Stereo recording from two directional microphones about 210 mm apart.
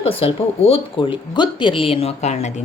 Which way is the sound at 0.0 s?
25° left (ahead or behind).